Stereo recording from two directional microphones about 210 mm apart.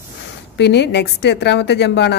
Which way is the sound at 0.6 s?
55° left (ahead or behind).